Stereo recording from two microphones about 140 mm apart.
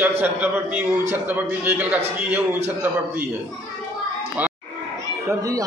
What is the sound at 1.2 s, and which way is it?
Speech, 15° right (ahead or behind).